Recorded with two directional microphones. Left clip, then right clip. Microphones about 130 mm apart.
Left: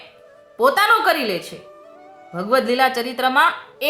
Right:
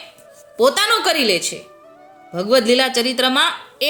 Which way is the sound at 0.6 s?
35° right (ahead or behind).